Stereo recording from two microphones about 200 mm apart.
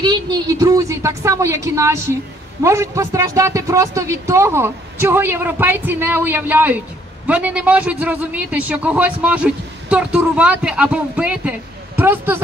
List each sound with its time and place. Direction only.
0.0 s a man's voice: 20° right (ahead or behind)